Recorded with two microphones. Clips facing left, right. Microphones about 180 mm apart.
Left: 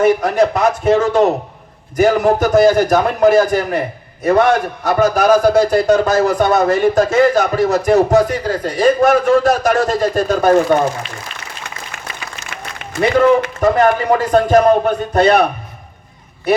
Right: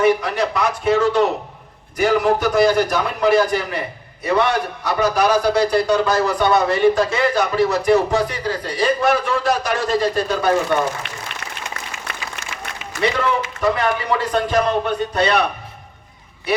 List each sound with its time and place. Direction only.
0.0 s a man's voice: 45° left (ahead or behind)
12.8 s a man's voice: 50° left (ahead or behind)
16.5 s speech: 45° left (ahead or behind)